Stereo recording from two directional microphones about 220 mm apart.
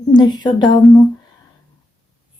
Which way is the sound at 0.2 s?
20° left (ahead or behind).